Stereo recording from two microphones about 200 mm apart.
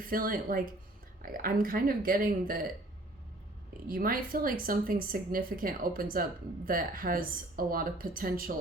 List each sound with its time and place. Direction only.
0.0 s speech: 45° right (ahead or behind)
3.8 s speech: 45° right (ahead or behind)